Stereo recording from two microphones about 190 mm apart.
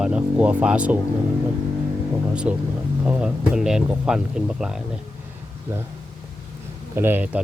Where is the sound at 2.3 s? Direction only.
5° right (ahead or behind).